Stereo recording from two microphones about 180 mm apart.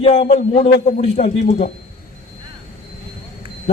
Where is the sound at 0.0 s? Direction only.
35° left (ahead or behind).